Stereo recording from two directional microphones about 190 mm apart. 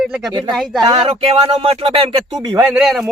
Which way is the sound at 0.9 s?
30° right (ahead or behind).